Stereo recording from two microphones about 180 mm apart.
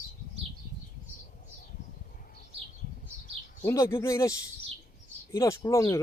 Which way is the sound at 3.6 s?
15° left (ahead or behind).